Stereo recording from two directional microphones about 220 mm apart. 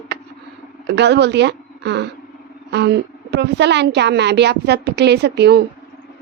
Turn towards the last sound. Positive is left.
turn(degrees=-50)  # may be behind; listen again after turning